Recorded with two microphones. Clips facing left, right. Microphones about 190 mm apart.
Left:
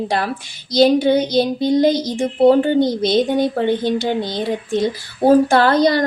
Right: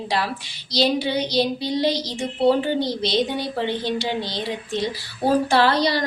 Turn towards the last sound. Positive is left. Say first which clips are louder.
# left 5 dB
turn(degrees=50)  # may be behind; listen again after turning